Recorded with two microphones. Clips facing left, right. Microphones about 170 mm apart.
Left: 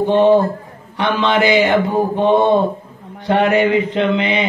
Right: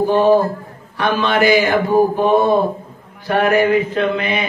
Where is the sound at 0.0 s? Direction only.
25° left (ahead or behind).